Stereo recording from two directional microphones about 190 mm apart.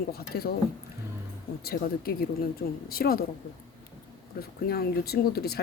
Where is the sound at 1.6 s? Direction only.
55° left (ahead or behind).